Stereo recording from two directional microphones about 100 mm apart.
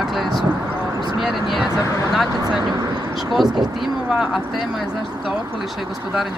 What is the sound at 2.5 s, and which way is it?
Speech, 45° right (ahead or behind).